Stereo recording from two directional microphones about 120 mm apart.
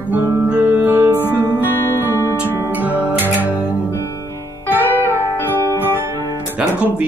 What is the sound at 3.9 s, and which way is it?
Music, 20° left (ahead or behind).